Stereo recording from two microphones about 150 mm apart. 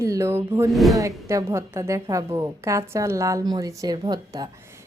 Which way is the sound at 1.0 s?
20° right (ahead or behind).